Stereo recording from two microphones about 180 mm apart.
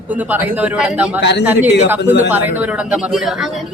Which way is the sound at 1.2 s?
70° left (ahead or behind).